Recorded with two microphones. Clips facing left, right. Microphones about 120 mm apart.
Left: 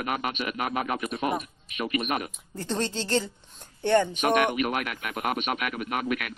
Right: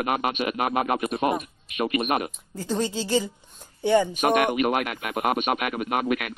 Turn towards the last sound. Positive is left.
turn(degrees=-35)  # may be behind; listen again after turning